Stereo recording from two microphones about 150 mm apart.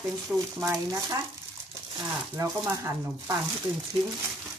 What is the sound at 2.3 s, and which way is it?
Speech, 20° right (ahead or behind).